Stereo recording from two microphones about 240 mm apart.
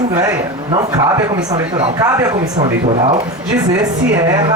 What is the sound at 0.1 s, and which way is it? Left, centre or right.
Speech, centre.